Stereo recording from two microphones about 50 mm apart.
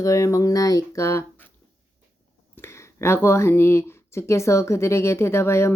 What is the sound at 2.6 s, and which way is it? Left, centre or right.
Speech, left.